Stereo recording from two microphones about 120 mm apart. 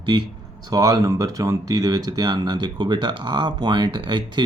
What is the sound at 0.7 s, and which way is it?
Speech, 30° right (ahead or behind).